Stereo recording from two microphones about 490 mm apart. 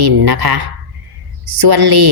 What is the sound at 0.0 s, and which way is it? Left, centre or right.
Speech, right.